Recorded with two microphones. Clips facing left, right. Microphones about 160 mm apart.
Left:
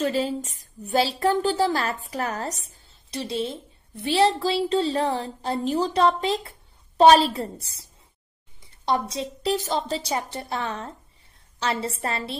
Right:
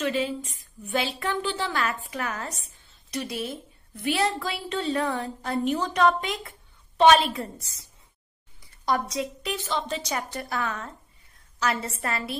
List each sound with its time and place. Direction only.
0.0 s a woman's voice: 35° left (ahead or behind)
2.6 s a sound: 35° left (ahead or behind)
4.0 s a woman's voice: 30° left (ahead or behind)